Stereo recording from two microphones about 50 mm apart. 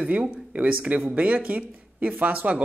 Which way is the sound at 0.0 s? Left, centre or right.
Right.